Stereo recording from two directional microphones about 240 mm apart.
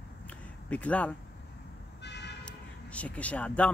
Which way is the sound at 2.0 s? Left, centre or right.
Left.